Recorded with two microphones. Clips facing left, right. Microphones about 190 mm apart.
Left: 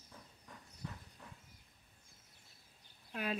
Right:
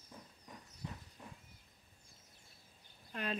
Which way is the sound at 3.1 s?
5° left (ahead or behind).